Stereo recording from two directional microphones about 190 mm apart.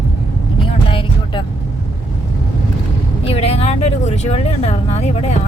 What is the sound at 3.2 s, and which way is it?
Speech, 35° left (ahead or behind).